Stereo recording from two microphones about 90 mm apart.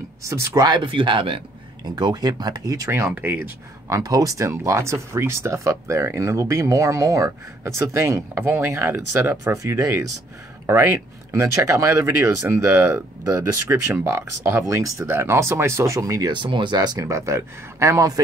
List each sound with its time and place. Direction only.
0.2 s speech: 35° right (ahead or behind)
0.7 s speech: 65° right (ahead or behind)
2.0 s speech: 50° right (ahead or behind)
3.2 s speech: 20° right (ahead or behind)
3.9 s speech: 40° right (ahead or behind)
16.3 s speech: 60° right (ahead or behind)
17.1 s speech: 35° right (ahead or behind)